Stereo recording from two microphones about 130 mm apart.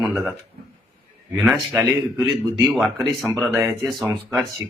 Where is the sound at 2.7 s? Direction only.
Centre (ahead or behind).